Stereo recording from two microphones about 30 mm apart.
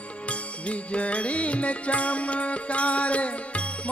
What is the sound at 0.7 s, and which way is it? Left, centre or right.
Music, left.